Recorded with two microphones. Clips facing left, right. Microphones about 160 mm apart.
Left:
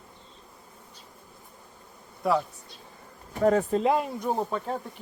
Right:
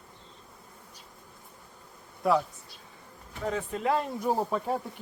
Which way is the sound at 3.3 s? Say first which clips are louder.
Left 10 dB; 50° left (ahead or behind).